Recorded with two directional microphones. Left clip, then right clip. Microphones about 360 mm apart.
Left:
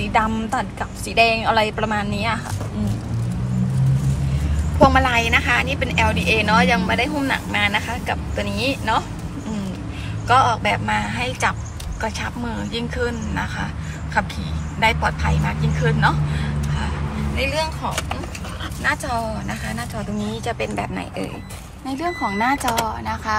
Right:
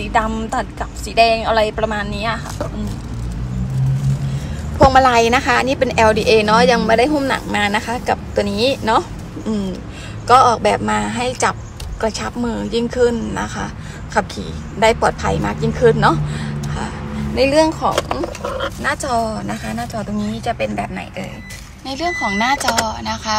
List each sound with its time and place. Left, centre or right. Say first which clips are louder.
0.0 s a woman's voice: right 2 dB; centre
4.8 s speech: right 5 dB; centre
10.2 s a woman's voice: right 5 dB; centre
14.8 s speech: right 5 dB; centre
17.4 s a woman's voice: right 10 dB; centre